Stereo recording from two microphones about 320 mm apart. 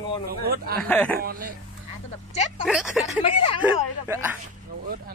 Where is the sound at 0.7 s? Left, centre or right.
Centre.